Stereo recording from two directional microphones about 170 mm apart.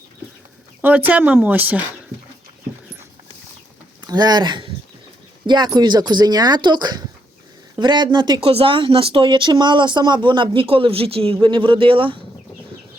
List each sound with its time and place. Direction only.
0.8 s speech: 10° right (ahead or behind)
4.0 s speech: 25° right (ahead or behind)